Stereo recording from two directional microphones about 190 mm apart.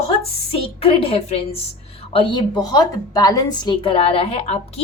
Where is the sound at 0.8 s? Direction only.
30° left (ahead or behind).